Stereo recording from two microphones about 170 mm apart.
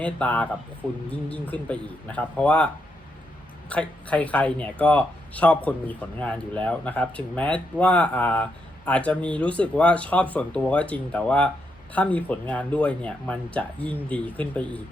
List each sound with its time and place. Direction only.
0.0 s speech: 10° left (ahead or behind)
3.7 s speech: 10° left (ahead or behind)